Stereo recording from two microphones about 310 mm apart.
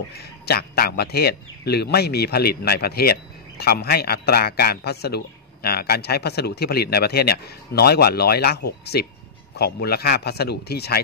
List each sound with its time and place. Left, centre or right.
0.2 s a man's voice: left